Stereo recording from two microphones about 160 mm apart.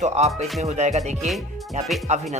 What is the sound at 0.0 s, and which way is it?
Speech, 45° right (ahead or behind).